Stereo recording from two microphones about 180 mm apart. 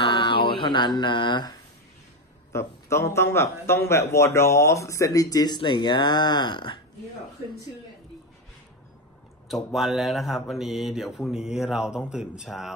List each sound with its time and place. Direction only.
0.0 s a sound: 30° left (ahead or behind)
2.5 s speech: 15° left (ahead or behind)
9.5 s speech: centre (ahead or behind)